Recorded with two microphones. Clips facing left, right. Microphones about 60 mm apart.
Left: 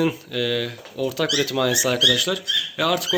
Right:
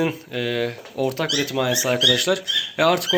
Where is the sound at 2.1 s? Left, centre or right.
Right.